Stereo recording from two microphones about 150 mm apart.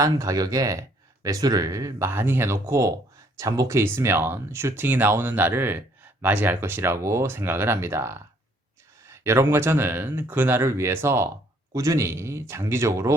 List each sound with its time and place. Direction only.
0.0 s speech: 20° right (ahead or behind)